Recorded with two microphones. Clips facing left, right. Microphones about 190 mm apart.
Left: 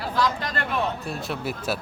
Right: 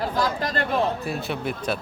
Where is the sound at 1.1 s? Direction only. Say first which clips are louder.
Right 2 dB; centre (ahead or behind).